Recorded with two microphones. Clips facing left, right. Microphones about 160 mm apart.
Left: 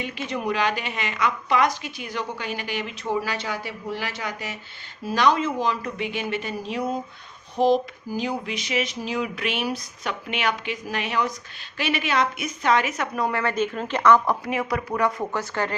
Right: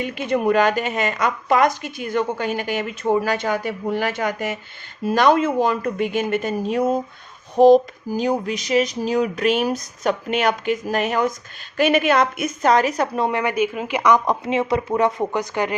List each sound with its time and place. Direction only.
0.0 s a woman's voice: 50° right (ahead or behind); by 15.7 s 15° right (ahead or behind)